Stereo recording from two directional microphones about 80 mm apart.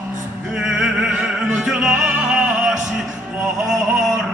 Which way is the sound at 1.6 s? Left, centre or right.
Centre.